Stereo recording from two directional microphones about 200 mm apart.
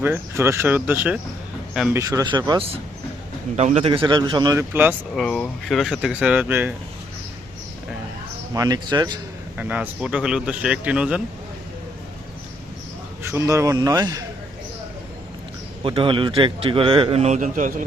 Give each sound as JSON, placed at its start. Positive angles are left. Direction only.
{"t": 0.0, "sound": "a man's voice", "side_deg": -10}
{"t": 5.2, "sound": "a man's voice", "side_deg": 0}
{"t": 8.5, "sound": "a man's voice", "side_deg": -20}
{"t": 9.6, "sound": "a man's voice", "side_deg": -10}
{"t": 13.2, "sound": "speech", "side_deg": -15}
{"t": 15.8, "sound": "a man's voice", "side_deg": -25}